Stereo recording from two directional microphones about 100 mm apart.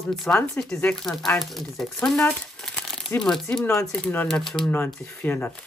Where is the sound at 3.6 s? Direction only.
20° left (ahead or behind).